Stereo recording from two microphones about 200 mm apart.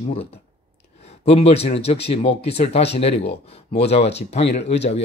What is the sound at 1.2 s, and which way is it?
Speech, 30° left (ahead or behind).